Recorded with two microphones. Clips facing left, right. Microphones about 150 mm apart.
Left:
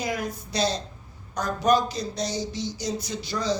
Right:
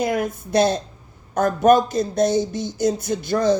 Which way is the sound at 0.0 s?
55° right (ahead or behind).